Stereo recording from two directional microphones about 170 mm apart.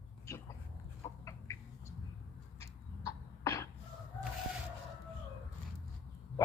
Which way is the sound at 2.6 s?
20° left (ahead or behind).